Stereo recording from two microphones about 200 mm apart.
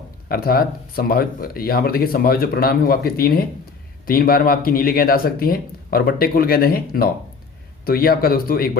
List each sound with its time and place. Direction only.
0.3 s speech: 50° left (ahead or behind)